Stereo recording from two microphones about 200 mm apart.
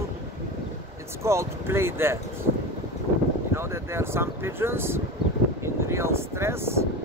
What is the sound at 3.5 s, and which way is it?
Speech, 10° right (ahead or behind).